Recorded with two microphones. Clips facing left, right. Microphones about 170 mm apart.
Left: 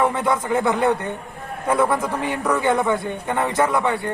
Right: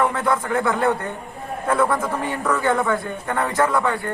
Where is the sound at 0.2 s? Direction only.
20° left (ahead or behind).